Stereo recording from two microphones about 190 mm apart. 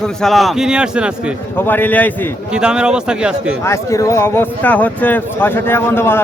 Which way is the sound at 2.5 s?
5° right (ahead or behind).